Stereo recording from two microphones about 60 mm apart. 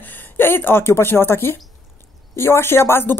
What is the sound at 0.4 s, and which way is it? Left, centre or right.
Speech, left.